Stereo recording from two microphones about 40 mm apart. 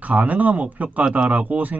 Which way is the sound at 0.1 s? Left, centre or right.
Right.